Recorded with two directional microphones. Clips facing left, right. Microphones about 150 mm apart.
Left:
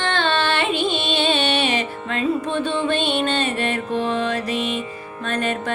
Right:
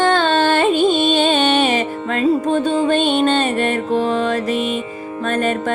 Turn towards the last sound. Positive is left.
turn(degrees=-45)  # may be behind; listen again after turning